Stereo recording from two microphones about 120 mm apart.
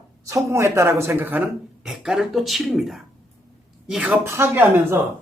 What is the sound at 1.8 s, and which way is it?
A woman's voice, 5° right (ahead or behind).